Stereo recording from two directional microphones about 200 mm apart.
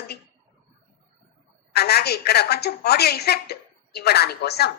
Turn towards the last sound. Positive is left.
turn(degrees=55)  # may be behind; listen again after turning